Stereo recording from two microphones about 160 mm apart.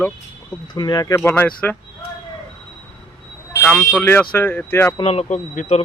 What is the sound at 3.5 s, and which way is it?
Vehicle, 5° left (ahead or behind).